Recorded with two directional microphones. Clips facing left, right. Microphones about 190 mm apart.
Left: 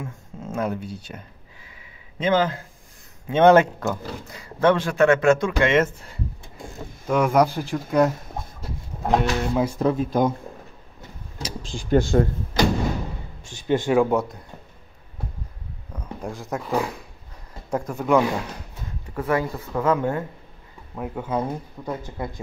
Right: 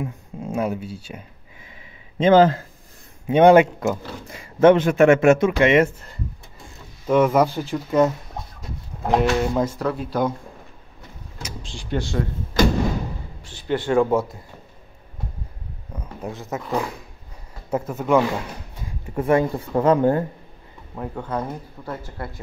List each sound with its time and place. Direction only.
0.0 s speech: 10° right (ahead or behind)
2.1 s speech: 30° right (ahead or behind)
3.3 s speech: 15° right (ahead or behind)
4.4 s a man's voice: 25° right (ahead or behind)
7.1 s speech: centre (ahead or behind)
9.8 s speech: 20° left (ahead or behind)
11.4 s speech: 45° left (ahead or behind)
13.5 s speech: 15° left (ahead or behind)
13.9 s speech: centre (ahead or behind)
15.9 s speech: 5° right (ahead or behind)
19.1 s speech: 25° right (ahead or behind)
20.9 s speech: 5° left (ahead or behind)